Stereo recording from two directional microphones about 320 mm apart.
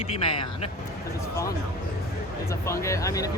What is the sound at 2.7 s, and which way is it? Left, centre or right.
Speech, centre.